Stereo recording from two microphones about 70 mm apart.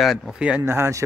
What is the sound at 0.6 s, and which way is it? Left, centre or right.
Speech, right.